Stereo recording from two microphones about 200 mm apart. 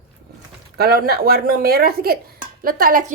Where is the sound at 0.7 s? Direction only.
50° right (ahead or behind).